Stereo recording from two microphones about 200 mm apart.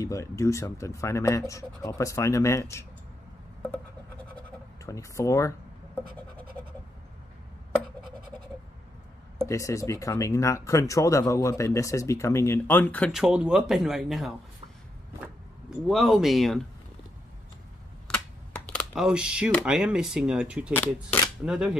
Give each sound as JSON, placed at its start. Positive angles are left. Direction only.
{"t": 0.0, "sound": "speech", "side_deg": 15}
{"t": 4.4, "sound": "scratch", "side_deg": 15}
{"t": 6.6, "sound": "bleat", "side_deg": 10}
{"t": 9.5, "sound": "speech", "side_deg": 15}
{"t": 15.9, "sound": "speech", "side_deg": 0}
{"t": 18.7, "sound": "speech", "side_deg": 0}
{"t": 20.7, "sound": "speech", "side_deg": 10}
{"t": 21.5, "sound": "speech", "side_deg": -5}